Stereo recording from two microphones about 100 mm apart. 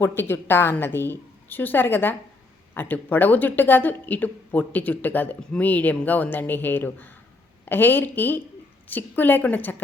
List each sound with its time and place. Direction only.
0.0 s a woman's voice: 20° left (ahead or behind)